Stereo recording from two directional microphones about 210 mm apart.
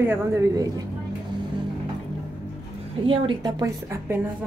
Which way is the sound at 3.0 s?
25° right (ahead or behind).